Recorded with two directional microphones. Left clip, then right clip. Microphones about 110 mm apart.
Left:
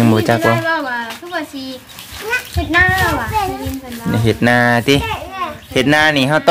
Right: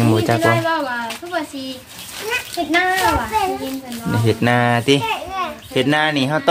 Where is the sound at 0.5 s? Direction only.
15° left (ahead or behind).